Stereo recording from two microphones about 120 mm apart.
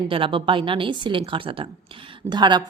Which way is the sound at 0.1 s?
45° right (ahead or behind).